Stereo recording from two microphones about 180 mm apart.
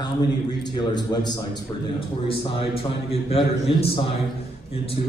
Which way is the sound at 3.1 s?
30° left (ahead or behind).